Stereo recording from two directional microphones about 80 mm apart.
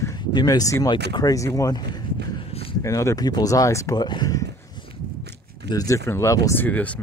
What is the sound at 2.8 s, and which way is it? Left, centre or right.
Speech, left.